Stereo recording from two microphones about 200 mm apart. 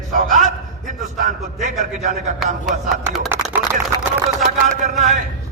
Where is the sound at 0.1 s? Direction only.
40° right (ahead or behind).